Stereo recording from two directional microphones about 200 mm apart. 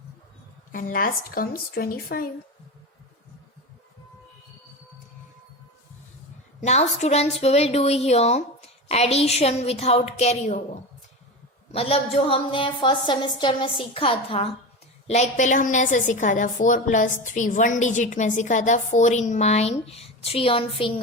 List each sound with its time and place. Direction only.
0.7 s speech: 45° left (ahead or behind)
6.6 s a woman's voice: 35° left (ahead or behind)
11.7 s a woman's voice: 30° left (ahead or behind)